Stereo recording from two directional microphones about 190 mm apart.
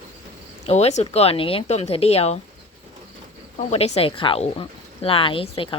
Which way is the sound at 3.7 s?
35° left (ahead or behind).